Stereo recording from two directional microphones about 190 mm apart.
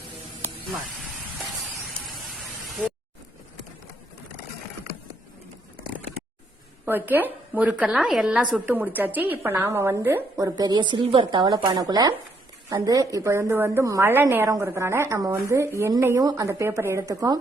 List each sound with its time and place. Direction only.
6.8 s a woman's voice: 10° right (ahead or behind)